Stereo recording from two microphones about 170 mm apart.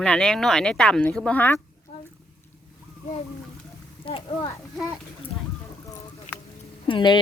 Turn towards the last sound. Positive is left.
turn(degrees=25)  # may be behind; listen again after turning